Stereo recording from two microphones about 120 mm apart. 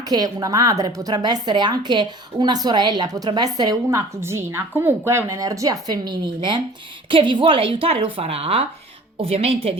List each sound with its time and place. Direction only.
0.1 s a woman's voice: 30° right (ahead or behind); by 9.7 s 55° right (ahead or behind)